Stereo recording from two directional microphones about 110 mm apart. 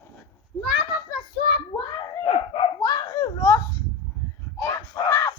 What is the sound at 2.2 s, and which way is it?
Speech, 55° left (ahead or behind).